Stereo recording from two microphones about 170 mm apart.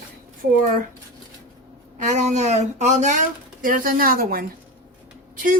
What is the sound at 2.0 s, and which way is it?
Speech, 45° right (ahead or behind).